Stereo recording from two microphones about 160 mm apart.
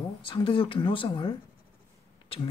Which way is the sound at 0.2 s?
35° left (ahead or behind).